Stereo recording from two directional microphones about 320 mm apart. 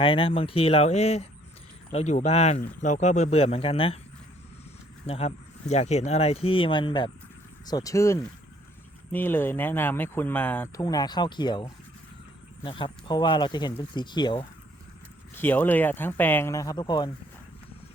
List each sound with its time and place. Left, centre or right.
0.0 s speech: centre
5.0 s speech: centre